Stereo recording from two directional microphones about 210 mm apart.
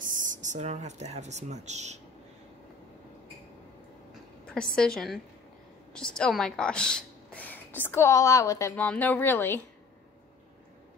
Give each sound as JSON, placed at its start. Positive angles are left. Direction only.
{"t": 0.0, "sound": "speech", "side_deg": -40}
{"t": 4.5, "sound": "a woman's voice", "side_deg": 5}